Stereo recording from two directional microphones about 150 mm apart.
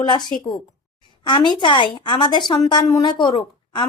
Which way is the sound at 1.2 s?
30° left (ahead or behind).